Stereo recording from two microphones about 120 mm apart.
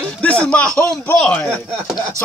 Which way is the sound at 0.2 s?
10° left (ahead or behind).